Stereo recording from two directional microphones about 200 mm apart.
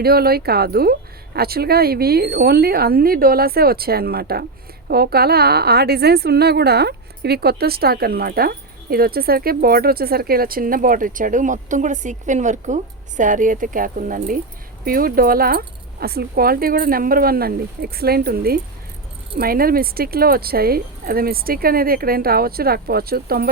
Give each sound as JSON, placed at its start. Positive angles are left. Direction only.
{"t": 0.0, "sound": "a woman's voice", "side_deg": -50}